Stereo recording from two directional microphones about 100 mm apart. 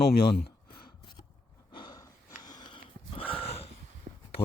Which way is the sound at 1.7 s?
55° left (ahead or behind).